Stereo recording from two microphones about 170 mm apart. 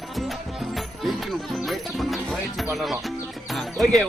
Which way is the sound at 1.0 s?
Centre (ahead or behind).